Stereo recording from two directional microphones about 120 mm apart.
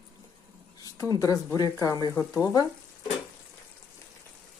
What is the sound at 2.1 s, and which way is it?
Speech, 20° left (ahead or behind).